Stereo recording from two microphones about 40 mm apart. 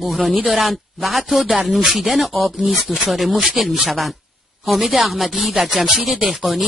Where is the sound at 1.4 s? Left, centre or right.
Centre.